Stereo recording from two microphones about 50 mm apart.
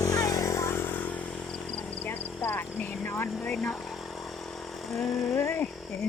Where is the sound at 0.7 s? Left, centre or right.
Left.